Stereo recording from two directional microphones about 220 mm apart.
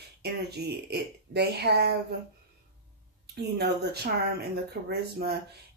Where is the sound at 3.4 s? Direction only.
45° right (ahead or behind).